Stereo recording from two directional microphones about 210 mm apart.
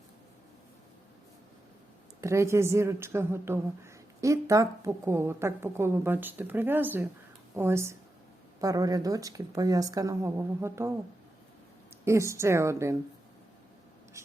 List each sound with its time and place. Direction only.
2.2 s a woman's voice: 15° right (ahead or behind)
12.0 s a woman's voice: 15° right (ahead or behind)